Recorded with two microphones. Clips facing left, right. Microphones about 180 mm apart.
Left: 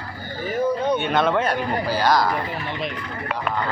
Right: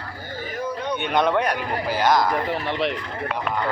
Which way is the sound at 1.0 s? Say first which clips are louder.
Even; 15° right (ahead or behind).